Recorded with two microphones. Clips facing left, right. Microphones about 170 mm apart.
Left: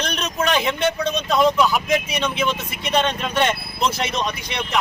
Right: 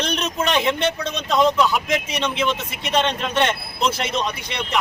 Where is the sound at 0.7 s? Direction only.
20° right (ahead or behind).